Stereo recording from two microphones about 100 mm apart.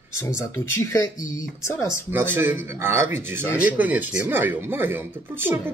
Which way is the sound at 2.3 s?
20° right (ahead or behind).